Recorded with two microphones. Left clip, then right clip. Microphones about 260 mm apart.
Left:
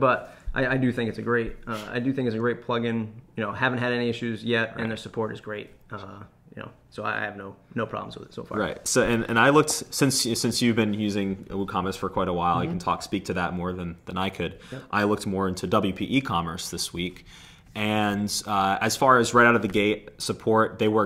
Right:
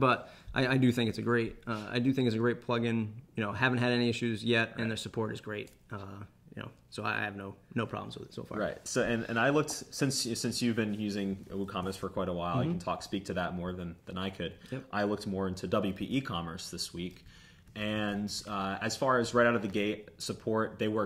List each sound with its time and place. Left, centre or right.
0.0 s speech: right
8.5 s speech: left